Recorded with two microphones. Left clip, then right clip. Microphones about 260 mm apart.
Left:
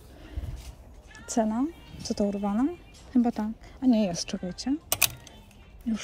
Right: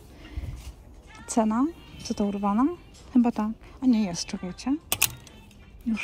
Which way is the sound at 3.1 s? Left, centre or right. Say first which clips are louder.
Right 2 dB; right.